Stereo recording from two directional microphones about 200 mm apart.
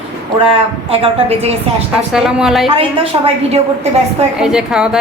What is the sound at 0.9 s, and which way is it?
Speech, 30° right (ahead or behind).